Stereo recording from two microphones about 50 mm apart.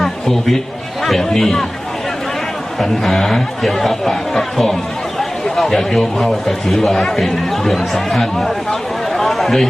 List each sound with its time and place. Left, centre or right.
0.0 s a sound: centre
1.0 s a man's voice: centre
2.8 s a man's voice: centre
9.1 s chatter: centre